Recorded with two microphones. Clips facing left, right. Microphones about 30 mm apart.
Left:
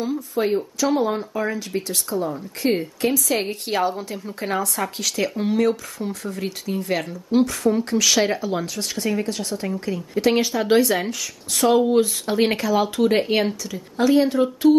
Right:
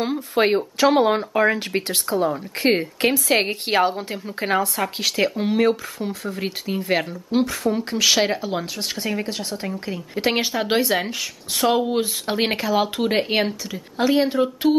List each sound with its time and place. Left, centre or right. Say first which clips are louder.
0.0 s speech: right 3 dB; right